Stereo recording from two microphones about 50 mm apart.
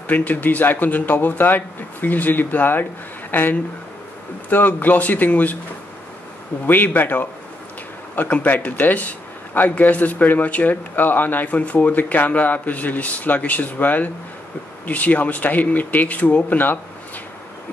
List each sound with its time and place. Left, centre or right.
0.0 s speech: left
6.6 s speech: left